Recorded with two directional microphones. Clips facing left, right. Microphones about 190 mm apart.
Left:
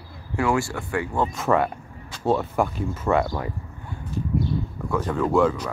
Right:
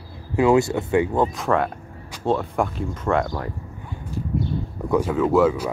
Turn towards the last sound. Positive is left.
turn(degrees=-5)  # may be behind; listen again after turning